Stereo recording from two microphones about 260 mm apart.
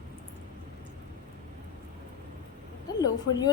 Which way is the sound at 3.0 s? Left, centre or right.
Centre.